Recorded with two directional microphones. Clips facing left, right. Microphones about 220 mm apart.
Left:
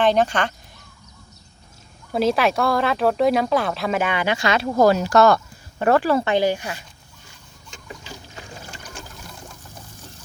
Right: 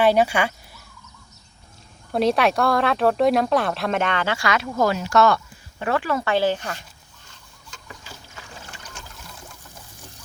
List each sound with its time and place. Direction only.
0.0 s speech: 10° right (ahead or behind)
2.1 s a woman's voice: centre (ahead or behind); by 6.2 s 35° left (ahead or behind)
6.2 s speech: 15° left (ahead or behind)